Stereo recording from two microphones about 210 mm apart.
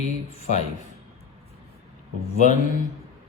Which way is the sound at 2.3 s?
40° left (ahead or behind).